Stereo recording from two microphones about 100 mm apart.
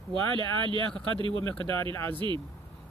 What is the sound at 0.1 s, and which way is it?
Speech, 55° right (ahead or behind).